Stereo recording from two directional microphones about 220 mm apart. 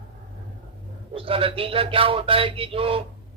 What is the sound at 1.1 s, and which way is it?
Speech, 25° right (ahead or behind).